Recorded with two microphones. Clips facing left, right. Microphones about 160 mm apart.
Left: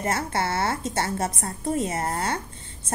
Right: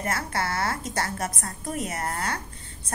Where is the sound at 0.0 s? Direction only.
25° left (ahead or behind).